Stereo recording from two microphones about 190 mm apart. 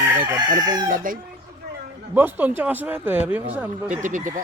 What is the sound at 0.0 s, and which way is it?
Chicken, 10° right (ahead or behind).